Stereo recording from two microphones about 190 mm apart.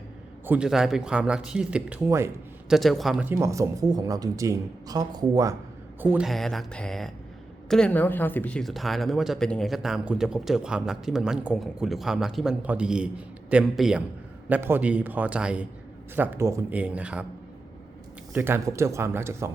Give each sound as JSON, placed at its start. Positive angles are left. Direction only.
{"t": 0.4, "sound": "speech", "side_deg": -5}
{"t": 2.6, "sound": "speech", "side_deg": 0}
{"t": 6.0, "sound": "speech", "side_deg": -10}
{"t": 18.3, "sound": "speech", "side_deg": -10}